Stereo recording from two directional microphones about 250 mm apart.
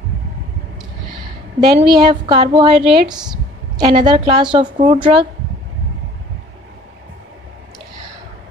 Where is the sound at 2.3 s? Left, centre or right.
Centre.